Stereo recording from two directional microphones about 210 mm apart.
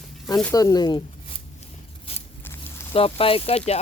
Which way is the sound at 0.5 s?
15° left (ahead or behind).